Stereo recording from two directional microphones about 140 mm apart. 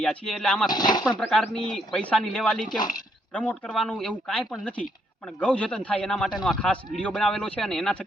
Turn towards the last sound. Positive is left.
turn(degrees=5)  # may be behind; listen again after turning